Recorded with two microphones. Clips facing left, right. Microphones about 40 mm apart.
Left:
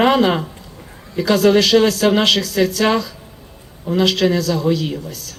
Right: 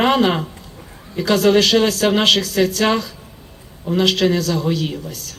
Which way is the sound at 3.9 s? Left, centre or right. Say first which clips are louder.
Left 1 dB; right.